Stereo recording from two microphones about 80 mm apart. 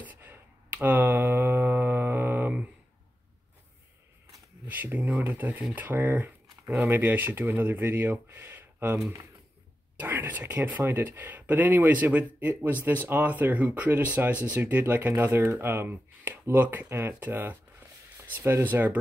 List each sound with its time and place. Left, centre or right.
0.0 s a sound: right
4.6 s speech: right
15.4 s speech: right